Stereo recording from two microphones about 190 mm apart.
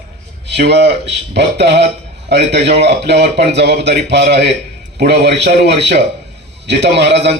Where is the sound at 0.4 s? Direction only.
65° right (ahead or behind).